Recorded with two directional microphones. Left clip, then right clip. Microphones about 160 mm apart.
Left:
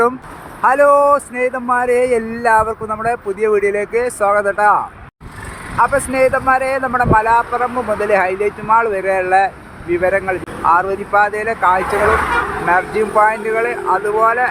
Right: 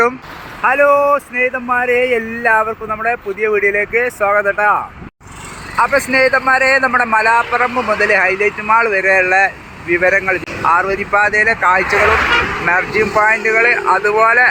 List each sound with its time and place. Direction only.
0.6 s speech: 15° left (ahead or behind)
5.7 s speech: 5° left (ahead or behind)